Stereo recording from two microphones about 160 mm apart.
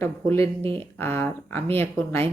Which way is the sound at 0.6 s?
35° right (ahead or behind).